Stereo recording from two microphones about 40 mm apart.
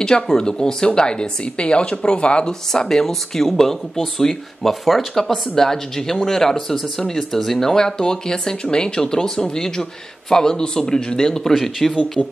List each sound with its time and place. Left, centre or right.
0.0 s a woman's voice: centre
2.7 s speech: centre
11.3 s speech: centre
11.9 s a woman's voice: left